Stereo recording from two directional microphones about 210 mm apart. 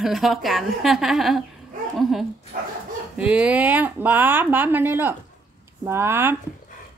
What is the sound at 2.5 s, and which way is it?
Speech, 40° right (ahead or behind).